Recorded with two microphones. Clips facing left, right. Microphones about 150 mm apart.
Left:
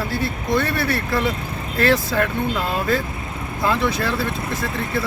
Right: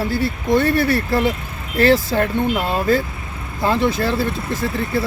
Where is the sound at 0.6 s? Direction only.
30° right (ahead or behind).